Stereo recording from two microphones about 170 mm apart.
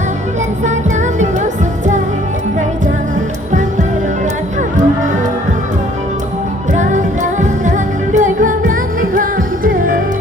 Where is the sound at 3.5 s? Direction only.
45° right (ahead or behind).